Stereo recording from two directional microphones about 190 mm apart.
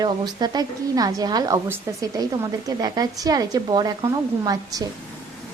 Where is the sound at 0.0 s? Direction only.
20° right (ahead or behind).